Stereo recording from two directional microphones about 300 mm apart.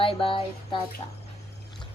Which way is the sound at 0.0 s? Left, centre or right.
Centre.